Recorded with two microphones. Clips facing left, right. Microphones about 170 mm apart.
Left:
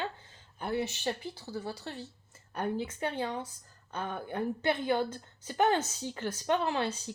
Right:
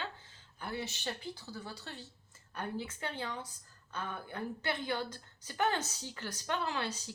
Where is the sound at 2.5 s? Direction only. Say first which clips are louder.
Left 6 dB; 35° left (ahead or behind).